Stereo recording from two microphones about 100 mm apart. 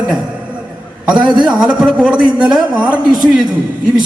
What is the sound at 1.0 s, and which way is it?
A man's voice, 10° right (ahead or behind).